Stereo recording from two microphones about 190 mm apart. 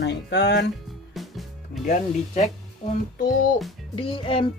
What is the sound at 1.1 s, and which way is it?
Music, centre (ahead or behind).